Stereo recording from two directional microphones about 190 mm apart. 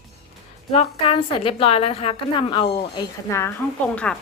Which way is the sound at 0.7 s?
30° left (ahead or behind).